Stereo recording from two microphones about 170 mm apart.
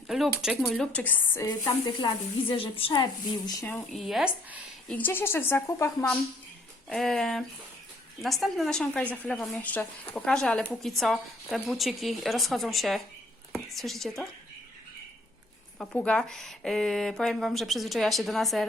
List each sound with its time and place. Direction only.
0.1 s a woman's voice: centre (ahead or behind)
2.0 s a woman's voice: 30° left (ahead or behind)
3.9 s speech: centre (ahead or behind)
4.9 s speech: 10° left (ahead or behind)
6.8 s a woman's voice: centre (ahead or behind)
15.8 s a woman's voice: 5° left (ahead or behind)